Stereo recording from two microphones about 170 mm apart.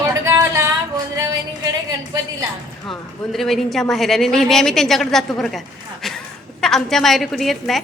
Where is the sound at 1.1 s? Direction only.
20° right (ahead or behind).